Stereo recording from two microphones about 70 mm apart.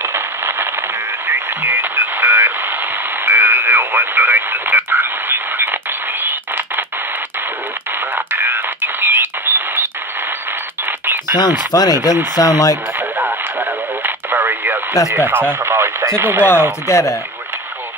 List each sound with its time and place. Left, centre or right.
0.0 s a sound: right
1.2 s radio: right
8.3 s radio: right
11.3 s speech: left
13.2 s radio: right
15.1 s speech: right
15.6 s speech: right
16.8 s speech: left